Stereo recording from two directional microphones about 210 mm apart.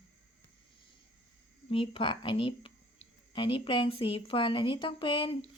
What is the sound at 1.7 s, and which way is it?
A woman's voice, 25° left (ahead or behind).